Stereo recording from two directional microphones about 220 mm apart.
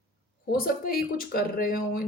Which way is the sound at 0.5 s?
40° left (ahead or behind).